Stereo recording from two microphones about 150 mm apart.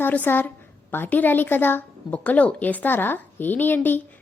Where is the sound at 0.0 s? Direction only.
10° left (ahead or behind).